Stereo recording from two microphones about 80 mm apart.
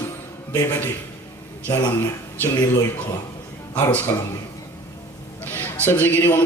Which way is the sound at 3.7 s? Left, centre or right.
Centre.